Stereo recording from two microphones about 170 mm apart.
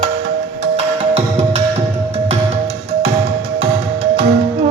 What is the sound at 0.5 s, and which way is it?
Music, 40° right (ahead or behind).